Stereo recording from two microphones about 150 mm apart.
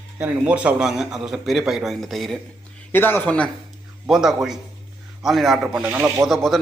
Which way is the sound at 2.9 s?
15° left (ahead or behind).